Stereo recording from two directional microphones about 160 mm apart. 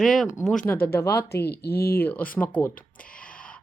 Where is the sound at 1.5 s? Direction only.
80° left.